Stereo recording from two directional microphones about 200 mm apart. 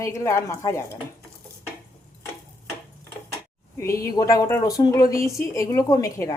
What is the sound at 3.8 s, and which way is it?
A woman's voice, 15° left (ahead or behind).